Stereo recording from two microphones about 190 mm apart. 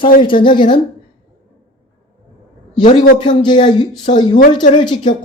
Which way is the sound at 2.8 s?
40° left (ahead or behind).